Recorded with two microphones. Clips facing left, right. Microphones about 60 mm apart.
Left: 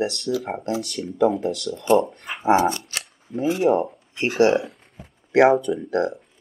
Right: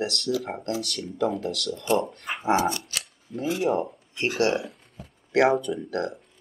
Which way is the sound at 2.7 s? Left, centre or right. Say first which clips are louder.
Left 2 dB; left.